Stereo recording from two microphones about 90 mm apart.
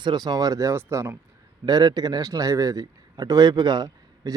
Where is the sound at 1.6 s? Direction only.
50° right (ahead or behind).